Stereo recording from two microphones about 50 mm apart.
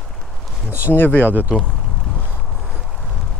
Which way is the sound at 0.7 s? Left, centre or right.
Right.